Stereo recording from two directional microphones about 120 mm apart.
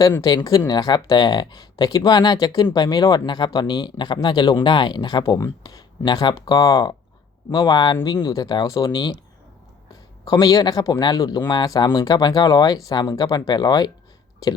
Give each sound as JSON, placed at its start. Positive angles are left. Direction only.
{"t": 0.2, "sound": "speech", "side_deg": 35}
{"t": 10.2, "sound": "speech", "side_deg": 30}